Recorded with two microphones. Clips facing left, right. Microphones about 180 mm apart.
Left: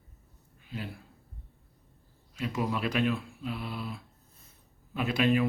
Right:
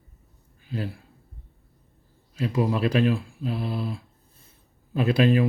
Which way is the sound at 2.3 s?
35° right (ahead or behind).